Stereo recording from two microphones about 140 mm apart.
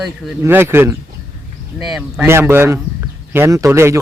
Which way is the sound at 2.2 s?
15° right (ahead or behind).